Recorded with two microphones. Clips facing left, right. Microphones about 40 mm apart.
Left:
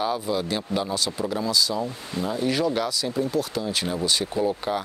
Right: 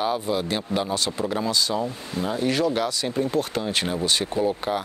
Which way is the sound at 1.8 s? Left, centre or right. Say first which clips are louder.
Right 1 dB; centre.